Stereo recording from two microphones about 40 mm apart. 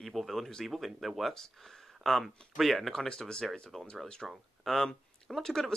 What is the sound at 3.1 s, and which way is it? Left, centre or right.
Speech, centre.